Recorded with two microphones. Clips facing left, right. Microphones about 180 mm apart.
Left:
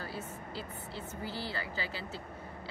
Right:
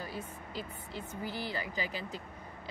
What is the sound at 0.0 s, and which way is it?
Speech, 15° right (ahead or behind).